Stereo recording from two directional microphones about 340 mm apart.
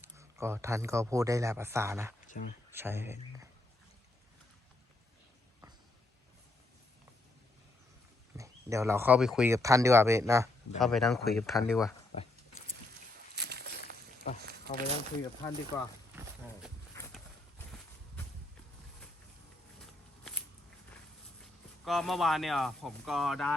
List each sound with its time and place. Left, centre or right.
0.0 s speech: centre
2.3 s speech: left
2.7 s speech: centre
8.4 s speech: centre
13.3 s a sound: right
14.3 s speech: centre
17.0 s horse: centre
21.8 s speech: centre